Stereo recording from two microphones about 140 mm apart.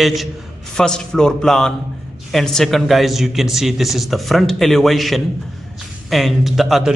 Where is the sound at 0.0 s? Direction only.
Centre (ahead or behind).